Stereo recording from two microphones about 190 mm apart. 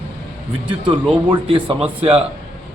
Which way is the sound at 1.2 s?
25° right (ahead or behind).